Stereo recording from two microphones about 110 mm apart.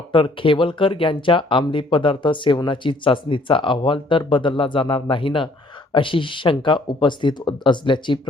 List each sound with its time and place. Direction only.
0.1 s speech: 50° left (ahead or behind)